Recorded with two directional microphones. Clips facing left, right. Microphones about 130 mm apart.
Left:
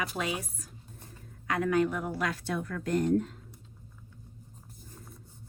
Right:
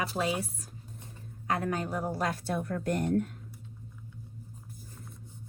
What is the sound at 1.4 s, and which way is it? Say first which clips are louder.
A woman's voice: left 4 dB; 35° right (ahead or behind).